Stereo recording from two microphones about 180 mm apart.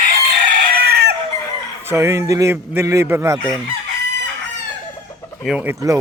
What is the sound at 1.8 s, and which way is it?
A man's voice, 15° right (ahead or behind).